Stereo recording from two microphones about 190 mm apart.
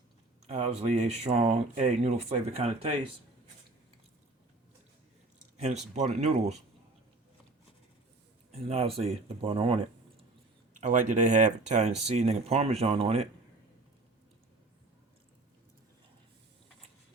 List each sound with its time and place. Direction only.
0.4 s speech: 35° right (ahead or behind)
5.5 s speech: 35° right (ahead or behind)
8.5 s speech: 30° right (ahead or behind)
10.8 s speech: 40° right (ahead or behind)